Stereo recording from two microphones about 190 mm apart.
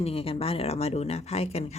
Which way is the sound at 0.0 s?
30° left (ahead or behind).